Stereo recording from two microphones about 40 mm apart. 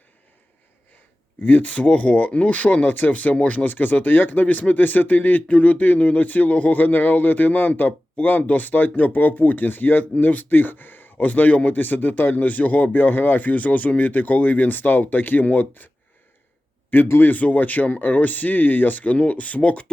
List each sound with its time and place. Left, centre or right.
1.4 s speech: left
3.7 s speech: left
17.1 s speech: left
19.1 s speech: left